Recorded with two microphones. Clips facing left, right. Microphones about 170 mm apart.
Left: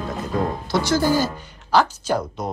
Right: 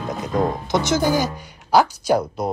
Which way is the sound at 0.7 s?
20° right (ahead or behind).